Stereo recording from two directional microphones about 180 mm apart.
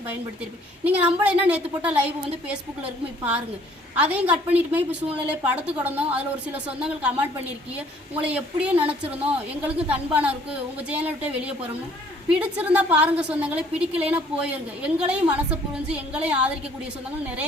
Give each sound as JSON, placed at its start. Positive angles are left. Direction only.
{"t": 0.9, "sound": "a woman's voice", "side_deg": -10}